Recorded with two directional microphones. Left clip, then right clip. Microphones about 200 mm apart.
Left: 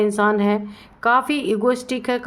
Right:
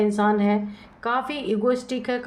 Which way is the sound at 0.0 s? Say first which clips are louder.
Left 3 dB; 35° left (ahead or behind).